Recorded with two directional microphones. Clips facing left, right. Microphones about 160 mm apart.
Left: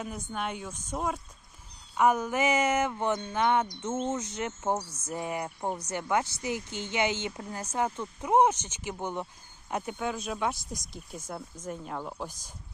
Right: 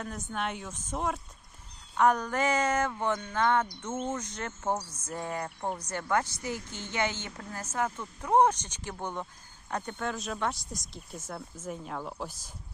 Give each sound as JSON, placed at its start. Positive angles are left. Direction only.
{"t": 0.0, "sound": "speech", "side_deg": 0}
{"t": 11.9, "sound": "speech", "side_deg": 10}
{"t": 12.2, "sound": "speech", "side_deg": -5}